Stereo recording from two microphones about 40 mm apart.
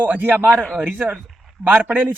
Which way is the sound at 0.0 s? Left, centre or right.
Right.